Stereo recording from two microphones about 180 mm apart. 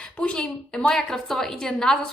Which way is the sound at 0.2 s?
5° left (ahead or behind).